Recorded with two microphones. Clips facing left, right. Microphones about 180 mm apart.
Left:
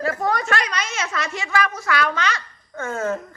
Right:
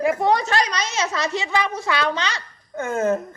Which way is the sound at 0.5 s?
35° right (ahead or behind).